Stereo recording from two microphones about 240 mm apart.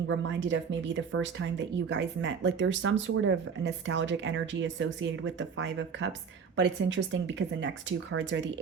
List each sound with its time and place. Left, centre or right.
0.1 s speech: right